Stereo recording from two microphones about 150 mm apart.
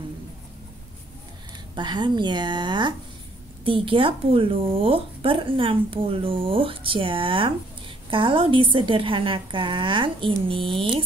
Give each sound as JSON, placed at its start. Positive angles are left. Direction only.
{"t": 1.8, "sound": "speech", "side_deg": -30}